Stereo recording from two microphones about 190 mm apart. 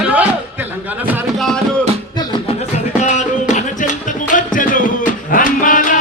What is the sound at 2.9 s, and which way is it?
Music, 40° left (ahead or behind).